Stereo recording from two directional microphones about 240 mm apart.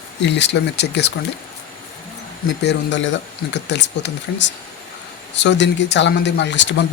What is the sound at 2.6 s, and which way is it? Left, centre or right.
Speech, left.